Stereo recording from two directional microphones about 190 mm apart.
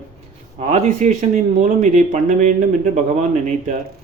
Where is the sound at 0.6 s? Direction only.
40° right (ahead or behind).